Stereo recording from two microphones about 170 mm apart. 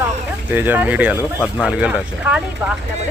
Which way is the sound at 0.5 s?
10° right (ahead or behind).